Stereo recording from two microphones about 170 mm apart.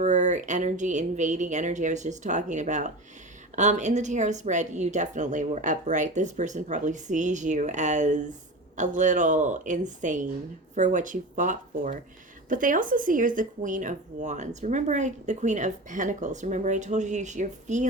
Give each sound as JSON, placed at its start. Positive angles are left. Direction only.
{"t": 0.0, "sound": "speech", "side_deg": -45}